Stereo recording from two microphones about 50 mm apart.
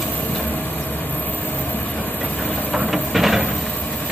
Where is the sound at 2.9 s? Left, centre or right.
Centre.